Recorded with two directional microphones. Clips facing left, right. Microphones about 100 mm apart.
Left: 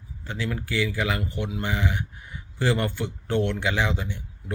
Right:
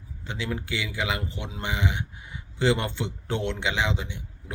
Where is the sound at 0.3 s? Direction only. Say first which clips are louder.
Left 1 dB; 20° right (ahead or behind).